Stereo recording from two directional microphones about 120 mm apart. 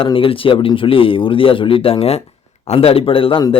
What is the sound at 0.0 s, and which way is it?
Speech, 50° left (ahead or behind).